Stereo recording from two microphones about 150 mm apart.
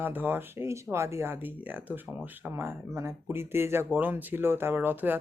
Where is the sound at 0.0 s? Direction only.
15° right (ahead or behind).